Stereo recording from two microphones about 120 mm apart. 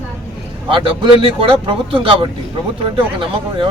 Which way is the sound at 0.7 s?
45° right (ahead or behind).